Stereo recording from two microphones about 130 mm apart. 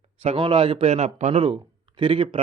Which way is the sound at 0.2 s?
45° right (ahead or behind).